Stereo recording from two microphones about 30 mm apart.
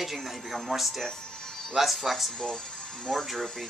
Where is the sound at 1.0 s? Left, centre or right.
Left.